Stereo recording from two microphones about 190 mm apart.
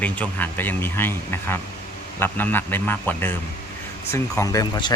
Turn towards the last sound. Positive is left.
turn(degrees=20)  # may be behind; listen again after turning